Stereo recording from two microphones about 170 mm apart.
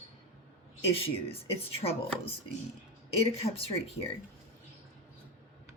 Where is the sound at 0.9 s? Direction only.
35° left (ahead or behind).